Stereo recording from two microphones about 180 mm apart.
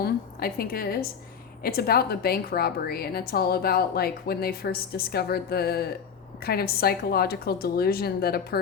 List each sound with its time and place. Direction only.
0.0 s a woman's voice: 55° left (ahead or behind)